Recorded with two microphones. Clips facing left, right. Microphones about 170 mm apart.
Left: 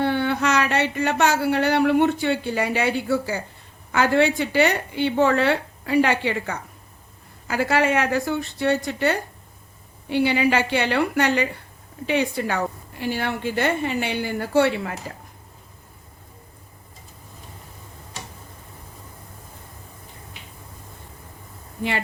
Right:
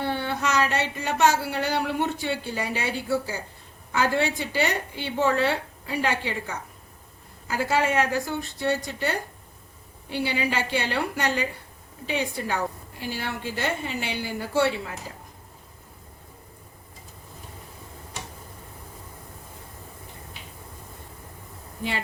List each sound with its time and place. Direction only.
0.0 s a woman's voice: 65° left (ahead or behind)